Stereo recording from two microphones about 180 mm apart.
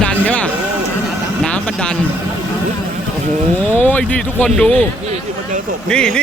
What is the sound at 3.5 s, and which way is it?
Speech, 10° left (ahead or behind).